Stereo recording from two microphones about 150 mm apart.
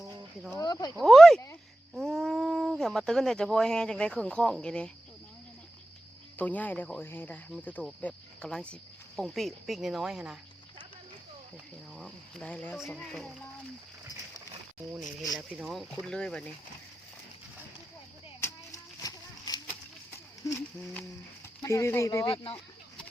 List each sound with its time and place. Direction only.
0.5 s speech: 25° left (ahead or behind)
0.9 s speech: centre (ahead or behind)
6.3 s speech: 10° left (ahead or behind)
11.9 s speech: 5° left (ahead or behind)
15.4 s speech: centre (ahead or behind)
18.3 s children playing: 20° left (ahead or behind)
20.4 s speech: 15° left (ahead or behind)